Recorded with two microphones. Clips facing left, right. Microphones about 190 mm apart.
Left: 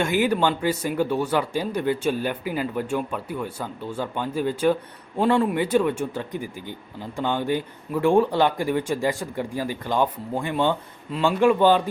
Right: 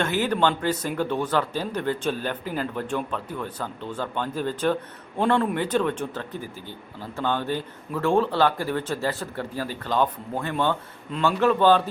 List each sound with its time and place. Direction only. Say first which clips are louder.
0.0 s speech: left 2 dB; 10° left (ahead or behind)